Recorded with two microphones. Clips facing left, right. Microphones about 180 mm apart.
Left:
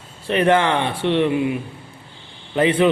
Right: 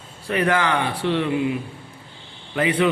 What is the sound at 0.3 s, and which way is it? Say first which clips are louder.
A man's voice: left 4 dB; 25° left (ahead or behind).